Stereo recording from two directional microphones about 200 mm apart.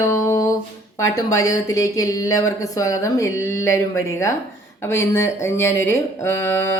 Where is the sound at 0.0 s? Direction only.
15° left (ahead or behind).